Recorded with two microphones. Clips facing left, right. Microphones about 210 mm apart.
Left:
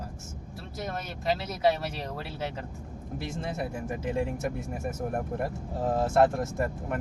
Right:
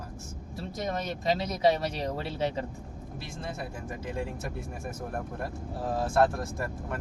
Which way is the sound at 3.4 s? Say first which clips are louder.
Left 3 dB; 25° left (ahead or behind).